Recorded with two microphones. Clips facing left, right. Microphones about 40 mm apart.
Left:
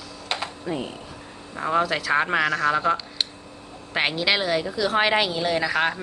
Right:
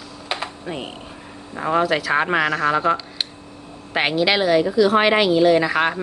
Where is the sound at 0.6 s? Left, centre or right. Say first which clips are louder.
Left 1 dB; right.